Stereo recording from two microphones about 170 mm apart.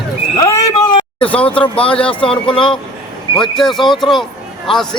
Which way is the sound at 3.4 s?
Centre (ahead or behind).